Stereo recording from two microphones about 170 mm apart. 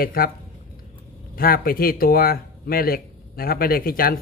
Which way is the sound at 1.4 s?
60° left (ahead or behind).